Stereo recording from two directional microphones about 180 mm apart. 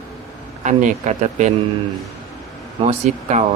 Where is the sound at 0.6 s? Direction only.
45° right (ahead or behind).